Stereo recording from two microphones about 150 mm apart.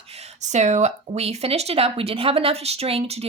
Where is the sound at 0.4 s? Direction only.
50° right (ahead or behind).